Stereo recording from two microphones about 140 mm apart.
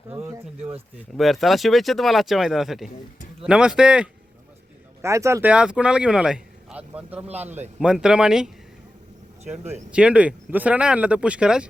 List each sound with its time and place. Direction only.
0.1 s a sound: 20° right (ahead or behind)
1.1 s speech: centre (ahead or behind)
5.0 s speech: 20° right (ahead or behind)
5.5 s speech: 5° right (ahead or behind)
9.4 s speech: 50° right (ahead or behind)
9.9 s speech: 10° right (ahead or behind)